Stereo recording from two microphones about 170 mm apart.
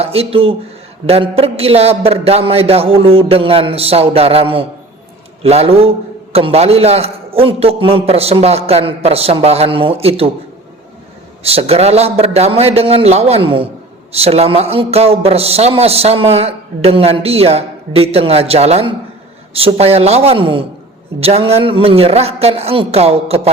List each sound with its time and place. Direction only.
0.0 s a man's voice: 35° right (ahead or behind)
11.4 s a man's voice: 35° right (ahead or behind)